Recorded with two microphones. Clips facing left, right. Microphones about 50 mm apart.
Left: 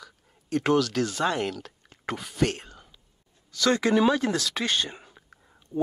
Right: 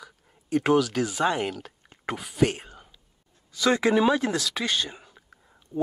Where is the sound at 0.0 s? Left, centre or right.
Centre.